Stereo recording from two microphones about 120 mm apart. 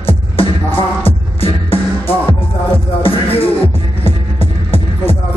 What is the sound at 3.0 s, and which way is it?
Music, 50° left (ahead or behind).